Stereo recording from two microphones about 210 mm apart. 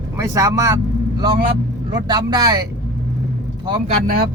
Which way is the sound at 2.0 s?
20° right (ahead or behind).